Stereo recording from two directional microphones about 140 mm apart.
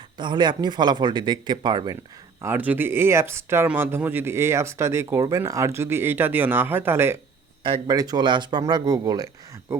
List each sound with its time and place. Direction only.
0.2 s a man's voice: 35° right (ahead or behind)
2.4 s speech: 15° right (ahead or behind)
7.9 s speech: 25° right (ahead or behind)